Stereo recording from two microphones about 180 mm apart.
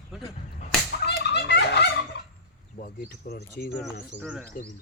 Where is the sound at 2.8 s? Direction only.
60° left (ahead or behind).